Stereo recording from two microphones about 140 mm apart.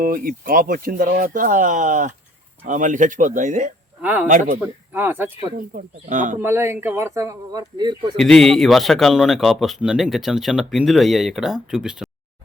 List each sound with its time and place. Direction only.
0.0 s speech: 75° right (ahead or behind)
4.0 s speech: 10° right (ahead or behind)
4.3 s speech: 70° right (ahead or behind)
4.6 s speech: 15° right (ahead or behind)
5.5 s speech: 70° right (ahead or behind)
6.4 s speech: 15° right (ahead or behind); by 8.1 s 30° right (ahead or behind)
8.1 s a man's voice: 5° left (ahead or behind)